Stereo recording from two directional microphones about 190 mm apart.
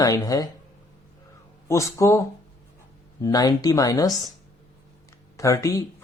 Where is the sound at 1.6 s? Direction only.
15° left (ahead or behind).